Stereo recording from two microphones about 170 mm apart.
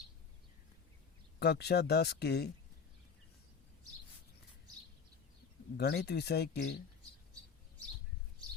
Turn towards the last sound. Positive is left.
turn(degrees=80)